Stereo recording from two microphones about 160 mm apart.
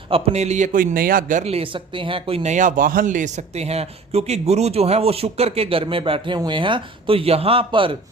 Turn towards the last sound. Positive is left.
turn(degrees=-35)  # may be behind; listen again after turning